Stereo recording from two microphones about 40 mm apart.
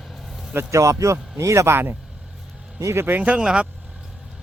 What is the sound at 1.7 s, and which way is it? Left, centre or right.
Speech, right.